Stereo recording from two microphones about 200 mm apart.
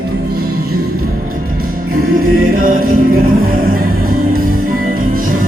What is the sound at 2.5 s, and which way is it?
Music, 45° right (ahead or behind).